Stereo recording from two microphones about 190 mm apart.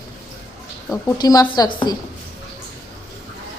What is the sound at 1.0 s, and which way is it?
Speech, 20° left (ahead or behind).